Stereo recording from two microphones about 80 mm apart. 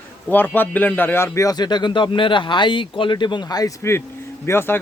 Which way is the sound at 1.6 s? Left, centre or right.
Left.